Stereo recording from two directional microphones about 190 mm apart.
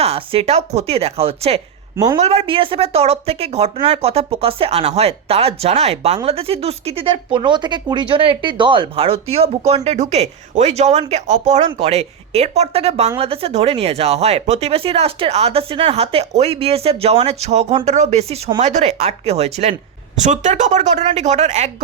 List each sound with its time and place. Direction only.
0.0 s speech: 30° right (ahead or behind)